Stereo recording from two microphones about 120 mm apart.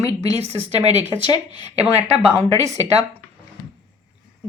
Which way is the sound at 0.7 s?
60° right (ahead or behind).